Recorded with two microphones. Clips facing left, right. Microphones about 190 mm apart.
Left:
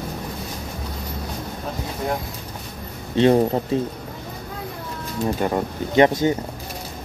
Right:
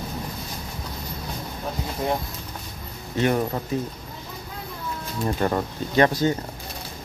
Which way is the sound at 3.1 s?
30° left (ahead or behind).